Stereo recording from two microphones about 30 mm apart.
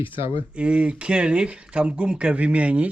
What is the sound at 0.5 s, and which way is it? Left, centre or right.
A man's voice, right.